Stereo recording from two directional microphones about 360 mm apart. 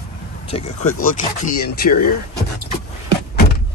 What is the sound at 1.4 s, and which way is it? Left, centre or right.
Speech, left.